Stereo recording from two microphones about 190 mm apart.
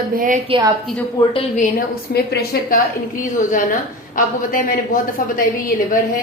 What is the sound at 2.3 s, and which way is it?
A woman's voice, 55° left (ahead or behind).